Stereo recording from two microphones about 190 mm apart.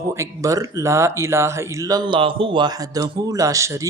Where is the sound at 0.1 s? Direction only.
15° right (ahead or behind).